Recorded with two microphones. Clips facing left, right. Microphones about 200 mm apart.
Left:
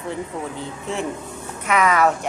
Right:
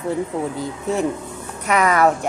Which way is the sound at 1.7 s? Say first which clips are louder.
Right 1 dB; 40° right (ahead or behind).